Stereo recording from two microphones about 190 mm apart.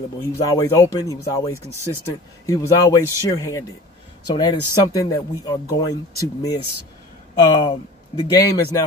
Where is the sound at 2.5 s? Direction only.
15° left (ahead or behind).